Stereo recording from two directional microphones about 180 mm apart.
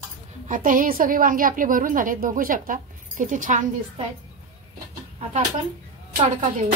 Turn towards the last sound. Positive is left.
turn(degrees=-45)  # may be behind; listen again after turning